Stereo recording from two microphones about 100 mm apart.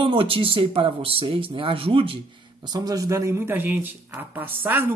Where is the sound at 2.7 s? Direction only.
40° right (ahead or behind).